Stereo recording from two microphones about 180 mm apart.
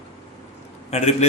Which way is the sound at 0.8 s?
35° left (ahead or behind).